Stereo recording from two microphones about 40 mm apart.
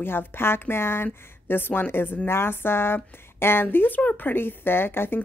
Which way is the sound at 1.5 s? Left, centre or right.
Left.